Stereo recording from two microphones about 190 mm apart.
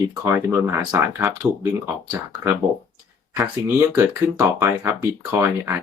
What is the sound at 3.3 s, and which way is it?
Speech, 10° right (ahead or behind).